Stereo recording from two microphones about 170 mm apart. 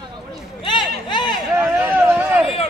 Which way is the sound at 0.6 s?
25° left (ahead or behind).